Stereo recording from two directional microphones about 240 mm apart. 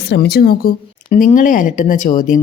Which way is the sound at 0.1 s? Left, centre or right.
Left.